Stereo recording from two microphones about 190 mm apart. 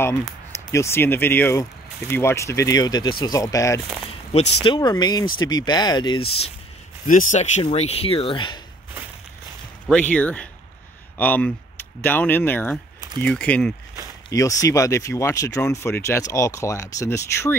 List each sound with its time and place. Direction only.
0.0 s speech: 10° left (ahead or behind)
4.3 s speech: 35° left (ahead or behind)
7.1 s speech: 45° left (ahead or behind); by 8.5 s 25° left (ahead or behind)
9.8 s speech: 5° left (ahead or behind)
14.3 s speech: 15° left (ahead or behind)